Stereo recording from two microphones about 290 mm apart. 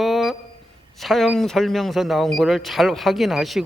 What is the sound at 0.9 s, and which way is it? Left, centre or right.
Speech, centre.